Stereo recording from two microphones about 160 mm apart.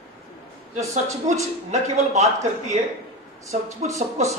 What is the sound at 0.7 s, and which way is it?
Speech, 45° right (ahead or behind).